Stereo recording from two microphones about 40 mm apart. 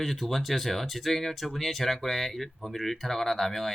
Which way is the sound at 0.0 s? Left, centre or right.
Centre.